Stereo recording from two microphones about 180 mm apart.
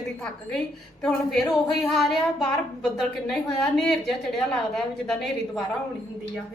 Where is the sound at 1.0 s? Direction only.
Centre (ahead or behind).